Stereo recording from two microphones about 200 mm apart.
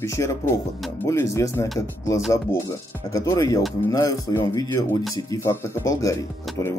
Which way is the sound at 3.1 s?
20° left (ahead or behind).